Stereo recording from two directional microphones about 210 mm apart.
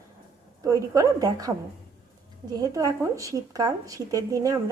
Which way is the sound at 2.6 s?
15° right (ahead or behind).